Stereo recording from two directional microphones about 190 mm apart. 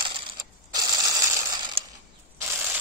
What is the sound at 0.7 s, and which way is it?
Mechanisms, 20° right (ahead or behind).